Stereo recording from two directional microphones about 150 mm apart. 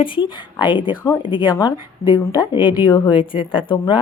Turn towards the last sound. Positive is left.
turn(degrees=35)  # may be behind; listen again after turning